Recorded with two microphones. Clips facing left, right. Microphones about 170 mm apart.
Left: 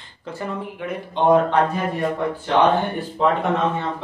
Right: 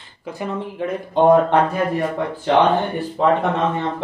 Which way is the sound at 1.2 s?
45° right (ahead or behind).